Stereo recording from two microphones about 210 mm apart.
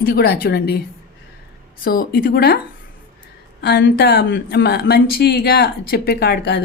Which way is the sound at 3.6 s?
50° left (ahead or behind).